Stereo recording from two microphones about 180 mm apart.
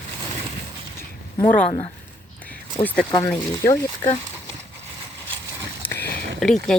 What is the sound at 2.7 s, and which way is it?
Speech, 10° left (ahead or behind).